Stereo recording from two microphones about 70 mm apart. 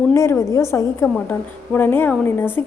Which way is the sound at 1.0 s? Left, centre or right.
Left.